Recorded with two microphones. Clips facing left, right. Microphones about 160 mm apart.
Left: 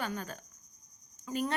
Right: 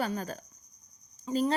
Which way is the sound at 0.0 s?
35° right (ahead or behind).